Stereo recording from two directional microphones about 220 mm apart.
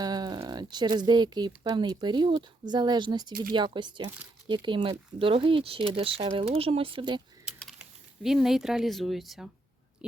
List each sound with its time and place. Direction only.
0.0 s speech: 20° right (ahead or behind)
7.4 s speech: 5° right (ahead or behind)